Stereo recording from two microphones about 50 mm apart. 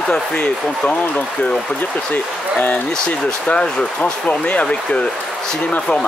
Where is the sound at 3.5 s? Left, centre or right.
Centre.